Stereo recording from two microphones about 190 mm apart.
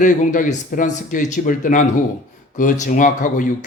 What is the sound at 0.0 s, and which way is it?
A man's voice, 40° left (ahead or behind).